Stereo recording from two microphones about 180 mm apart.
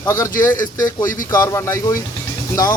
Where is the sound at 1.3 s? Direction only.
20° left (ahead or behind).